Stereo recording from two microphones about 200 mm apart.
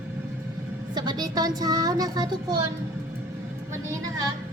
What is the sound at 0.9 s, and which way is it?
Speech, 20° right (ahead or behind).